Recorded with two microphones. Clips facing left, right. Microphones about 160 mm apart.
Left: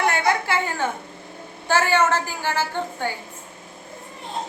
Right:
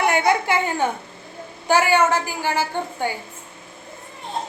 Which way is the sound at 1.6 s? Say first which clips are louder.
Right 2 dB; 15° right (ahead or behind).